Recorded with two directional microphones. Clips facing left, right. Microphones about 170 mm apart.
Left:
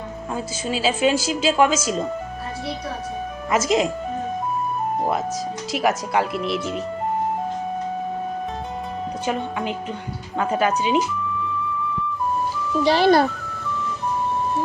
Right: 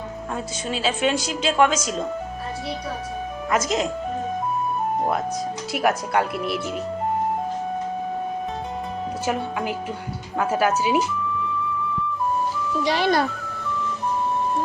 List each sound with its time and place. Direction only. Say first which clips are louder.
0.3 s a woman's voice: left 3 dB; 5° left (ahead or behind)
3.5 s speech: left 3 dB; 5° left (ahead or behind)
5.7 s a woman's voice: left 1 dB; centre (ahead or behind)
9.2 s a woman's voice: even; 5° right (ahead or behind)
12.8 s speech: left 5 dB; 30° left (ahead or behind)